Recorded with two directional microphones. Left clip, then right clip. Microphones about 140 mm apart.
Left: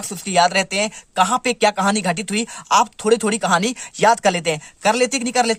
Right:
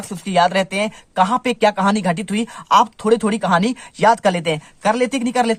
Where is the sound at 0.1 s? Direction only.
25° left (ahead or behind).